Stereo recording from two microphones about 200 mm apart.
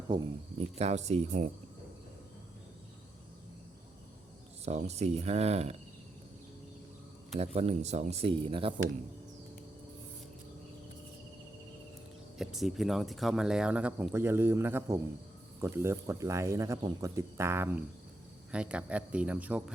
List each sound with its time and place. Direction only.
0.1 s speech: 25° right (ahead or behind)
4.6 s speech: 35° right (ahead or behind)
7.3 s speech: 30° right (ahead or behind)
12.4 s speech: centre (ahead or behind)